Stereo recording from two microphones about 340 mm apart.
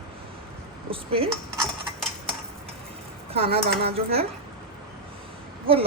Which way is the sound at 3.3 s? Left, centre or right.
Centre.